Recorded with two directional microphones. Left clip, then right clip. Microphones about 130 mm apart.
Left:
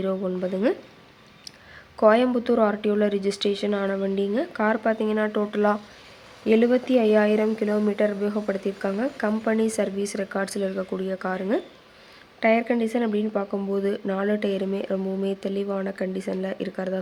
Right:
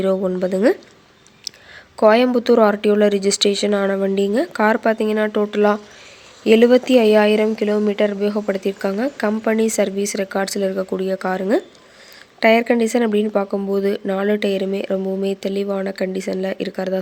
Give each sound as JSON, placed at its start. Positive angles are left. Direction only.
{"t": 0.0, "sound": "speech", "side_deg": -40}
{"t": 1.5, "sound": "a sound", "side_deg": -25}
{"t": 2.0, "sound": "speech", "side_deg": -35}
{"t": 6.4, "sound": "speech", "side_deg": -45}